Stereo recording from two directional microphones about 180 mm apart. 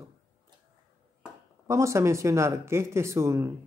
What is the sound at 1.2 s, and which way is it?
Speech, 15° right (ahead or behind).